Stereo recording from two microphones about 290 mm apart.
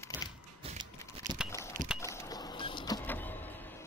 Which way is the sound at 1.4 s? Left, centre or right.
Centre.